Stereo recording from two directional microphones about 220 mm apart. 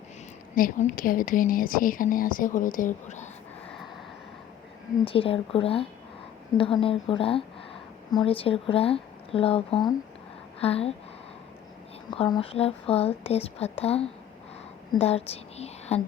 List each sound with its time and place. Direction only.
0.5 s speech: 40° left (ahead or behind)
5.0 s a woman's voice: 25° left (ahead or behind)
12.1 s a woman's voice: 25° left (ahead or behind)